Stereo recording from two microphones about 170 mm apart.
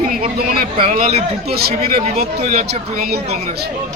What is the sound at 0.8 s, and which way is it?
Speech, 40° right (ahead or behind).